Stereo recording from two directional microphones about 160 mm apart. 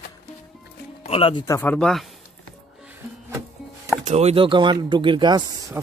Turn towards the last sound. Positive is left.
turn(degrees=-30)  # may be behind; listen again after turning